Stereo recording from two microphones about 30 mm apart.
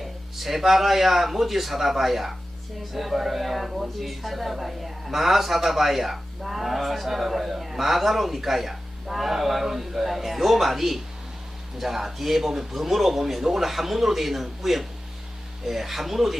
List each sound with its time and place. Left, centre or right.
0.0 s speech: centre